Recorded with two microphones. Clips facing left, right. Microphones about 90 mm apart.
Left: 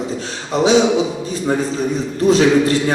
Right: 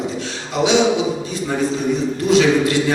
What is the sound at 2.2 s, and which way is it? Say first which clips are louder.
Speech: left 3 dB; 40° left (ahead or behind).